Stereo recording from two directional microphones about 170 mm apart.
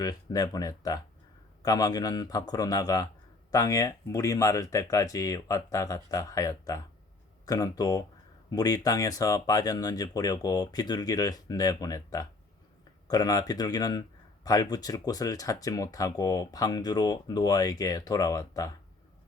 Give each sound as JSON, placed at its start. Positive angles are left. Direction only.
{"t": 0.0, "sound": "speech", "side_deg": 20}